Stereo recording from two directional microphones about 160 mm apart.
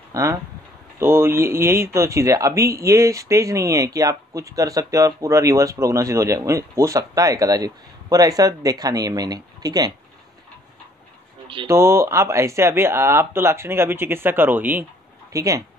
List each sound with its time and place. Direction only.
0.1 s speech: 20° right (ahead or behind)
11.4 s a sound: 30° right (ahead or behind)
11.7 s speech: 15° right (ahead or behind)